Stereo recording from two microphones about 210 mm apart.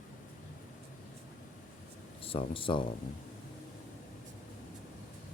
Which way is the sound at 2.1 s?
25° left (ahead or behind).